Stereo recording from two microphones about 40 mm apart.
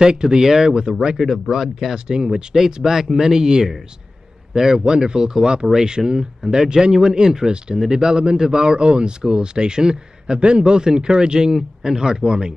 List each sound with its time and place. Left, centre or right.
0.0 s speech: centre
1.1 s a man's voice: centre; by 12.5 s right